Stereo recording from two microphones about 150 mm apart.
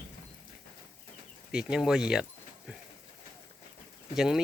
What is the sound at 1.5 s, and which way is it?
Speech, 5° right (ahead or behind).